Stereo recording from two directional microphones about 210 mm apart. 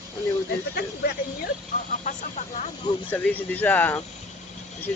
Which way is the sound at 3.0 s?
10° left (ahead or behind).